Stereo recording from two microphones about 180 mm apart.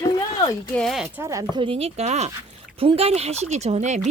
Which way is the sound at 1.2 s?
20° right (ahead or behind).